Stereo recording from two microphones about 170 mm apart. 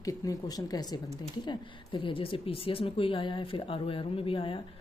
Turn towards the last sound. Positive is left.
turn(degrees=30)  # may be behind; listen again after turning